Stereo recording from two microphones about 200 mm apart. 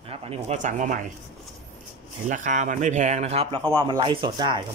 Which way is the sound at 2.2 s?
40° right (ahead or behind).